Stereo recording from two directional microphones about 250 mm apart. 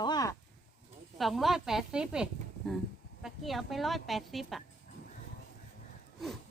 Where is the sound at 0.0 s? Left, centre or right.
Centre.